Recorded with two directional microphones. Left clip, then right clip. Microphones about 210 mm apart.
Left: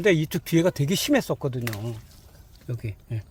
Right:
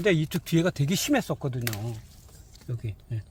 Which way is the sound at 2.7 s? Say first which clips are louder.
Left 4 dB; 35° left (ahead or behind).